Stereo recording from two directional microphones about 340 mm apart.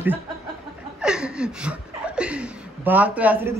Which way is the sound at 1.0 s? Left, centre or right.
Centre.